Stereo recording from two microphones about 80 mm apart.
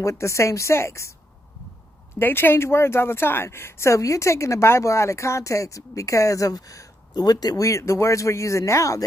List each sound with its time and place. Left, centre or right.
0.0 s speech: left
2.1 s speech: left